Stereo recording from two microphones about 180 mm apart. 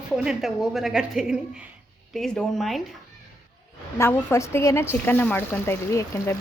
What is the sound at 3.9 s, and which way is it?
Speech, 15° left (ahead or behind).